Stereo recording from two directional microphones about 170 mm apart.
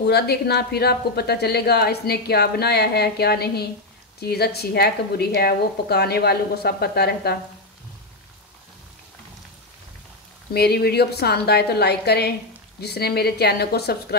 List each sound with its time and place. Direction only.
0.0 s a woman's voice: 70° left (ahead or behind)
10.5 s a woman's voice: 70° left (ahead or behind)